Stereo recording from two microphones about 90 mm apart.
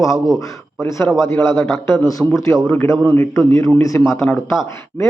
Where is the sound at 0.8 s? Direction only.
35° left (ahead or behind).